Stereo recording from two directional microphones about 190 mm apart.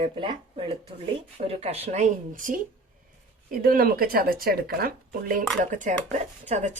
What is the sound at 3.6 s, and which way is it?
A woman's voice, 50° right (ahead or behind).